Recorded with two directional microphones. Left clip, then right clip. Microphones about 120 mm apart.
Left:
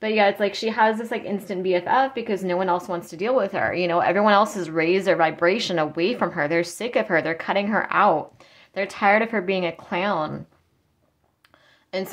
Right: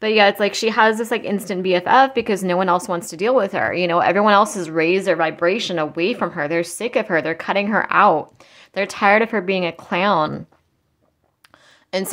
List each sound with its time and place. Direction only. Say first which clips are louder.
0.0 s a woman's voice: right 5 dB; 35° right (ahead or behind)
11.9 s a woman's voice: right 5 dB; 50° right (ahead or behind)